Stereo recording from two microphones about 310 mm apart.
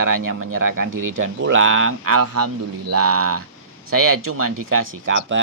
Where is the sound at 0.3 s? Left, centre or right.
Right.